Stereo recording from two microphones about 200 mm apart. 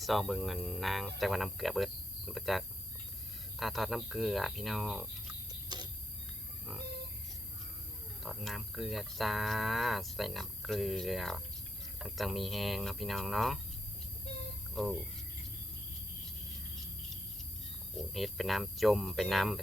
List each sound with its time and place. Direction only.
0.0 s speech: centre (ahead or behind)
5.5 s a sound: 20° right (ahead or behind)
8.2 s speech: centre (ahead or behind)
14.8 s speech: centre (ahead or behind)
17.9 s speech: centre (ahead or behind)